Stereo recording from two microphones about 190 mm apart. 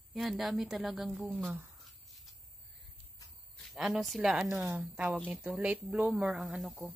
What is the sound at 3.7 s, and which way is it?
A woman's voice, centre (ahead or behind).